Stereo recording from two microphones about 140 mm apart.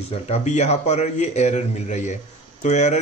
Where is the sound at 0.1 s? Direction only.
50° left (ahead or behind).